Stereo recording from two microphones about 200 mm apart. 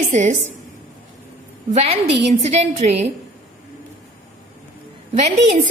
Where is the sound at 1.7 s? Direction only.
30° right (ahead or behind).